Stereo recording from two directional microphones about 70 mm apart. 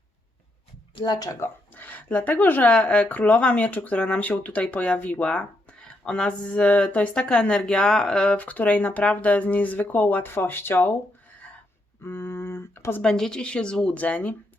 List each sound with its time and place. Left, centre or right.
1.0 s speech: left
1.7 s speech: left
12.0 s a sound: left
13.0 s speech: centre